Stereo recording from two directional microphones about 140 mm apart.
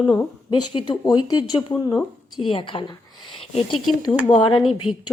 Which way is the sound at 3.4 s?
45° left (ahead or behind).